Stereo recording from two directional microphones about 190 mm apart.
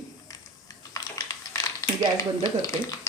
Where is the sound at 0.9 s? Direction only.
20° left (ahead or behind).